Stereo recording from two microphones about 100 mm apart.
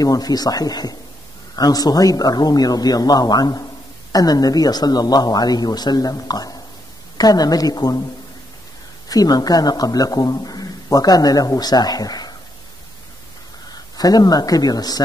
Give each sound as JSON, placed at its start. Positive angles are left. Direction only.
{"t": 0.0, "sound": "a man's voice", "side_deg": 40}
{"t": 9.1, "sound": "a man's voice", "side_deg": 40}
{"t": 13.9, "sound": "a man's voice", "side_deg": 40}